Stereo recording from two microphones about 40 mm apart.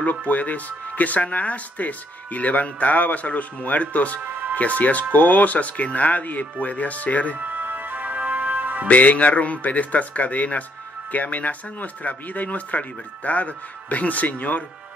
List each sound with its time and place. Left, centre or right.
0.3 s speech: left
7.3 s music: right
8.8 s speech: left